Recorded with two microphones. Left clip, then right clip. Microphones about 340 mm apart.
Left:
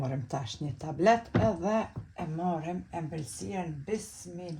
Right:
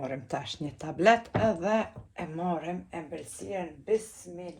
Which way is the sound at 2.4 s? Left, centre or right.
Right.